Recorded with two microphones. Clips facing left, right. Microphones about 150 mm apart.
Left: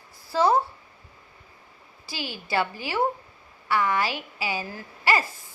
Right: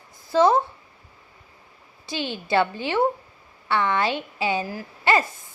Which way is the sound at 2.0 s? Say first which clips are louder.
Right 6 dB; 25° right (ahead or behind).